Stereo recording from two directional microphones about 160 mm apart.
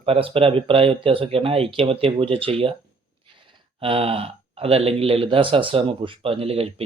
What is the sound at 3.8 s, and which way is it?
Speech, 35° right (ahead or behind).